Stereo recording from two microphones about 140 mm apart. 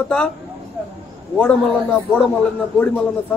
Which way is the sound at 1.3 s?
5° left (ahead or behind).